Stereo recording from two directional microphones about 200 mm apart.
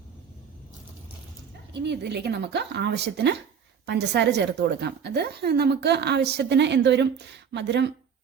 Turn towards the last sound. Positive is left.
turn(degrees=-60)  # may be behind; listen again after turning